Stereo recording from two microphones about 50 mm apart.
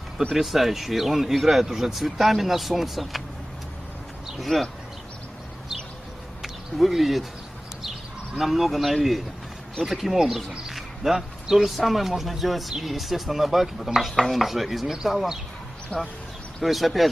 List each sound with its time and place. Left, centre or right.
0.3 s speech: centre
4.4 s speech: centre
6.4 s speech: centre
8.4 s speech: centre
15.9 s speech: left
16.6 s speech: centre